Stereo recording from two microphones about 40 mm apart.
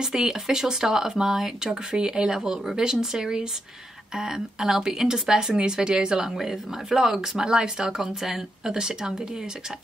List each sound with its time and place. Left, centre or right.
0.0 s speech: centre
6.3 s speech: centre
8.7 s speech: centre